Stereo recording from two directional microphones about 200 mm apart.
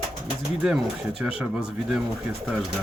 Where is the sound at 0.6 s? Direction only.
5° right (ahead or behind).